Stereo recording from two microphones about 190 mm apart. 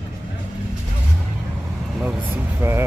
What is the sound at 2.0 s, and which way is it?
Vehicle, 10° right (ahead or behind).